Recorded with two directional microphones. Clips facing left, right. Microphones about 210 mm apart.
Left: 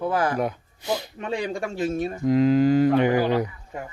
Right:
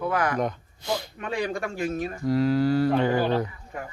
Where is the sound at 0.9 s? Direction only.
20° left (ahead or behind).